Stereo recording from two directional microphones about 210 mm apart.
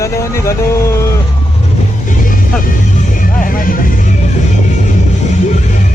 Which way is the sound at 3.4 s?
40° left (ahead or behind).